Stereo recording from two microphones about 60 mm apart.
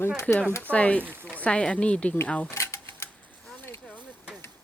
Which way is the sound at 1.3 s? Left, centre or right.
Left.